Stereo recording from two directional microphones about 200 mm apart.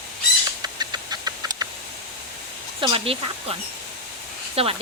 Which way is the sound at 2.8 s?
25° right (ahead or behind).